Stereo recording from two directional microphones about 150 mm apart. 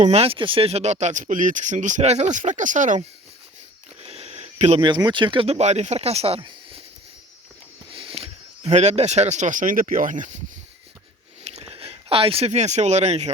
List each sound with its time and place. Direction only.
0.0 s speech: 45° right (ahead or behind)
4.0 s a sound: 40° right (ahead or behind)
4.8 s speech: 30° right (ahead or behind)
7.9 s speech: 35° right (ahead or behind); by 10.4 s 55° right (ahead or behind)
11.4 s speech: 45° right (ahead or behind)